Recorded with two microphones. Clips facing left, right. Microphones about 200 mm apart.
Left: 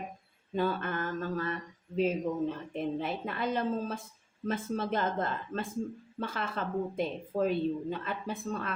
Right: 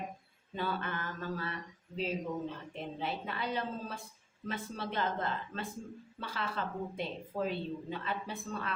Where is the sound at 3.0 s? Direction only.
45° left (ahead or behind).